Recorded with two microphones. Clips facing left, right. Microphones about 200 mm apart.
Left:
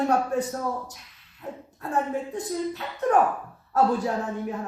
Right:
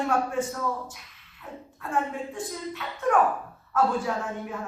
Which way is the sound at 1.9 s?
40° left (ahead or behind).